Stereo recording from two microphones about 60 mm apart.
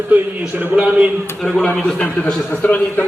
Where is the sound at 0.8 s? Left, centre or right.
Centre.